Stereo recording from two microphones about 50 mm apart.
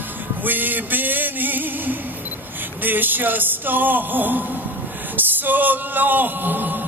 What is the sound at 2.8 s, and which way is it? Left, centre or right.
Speech, right.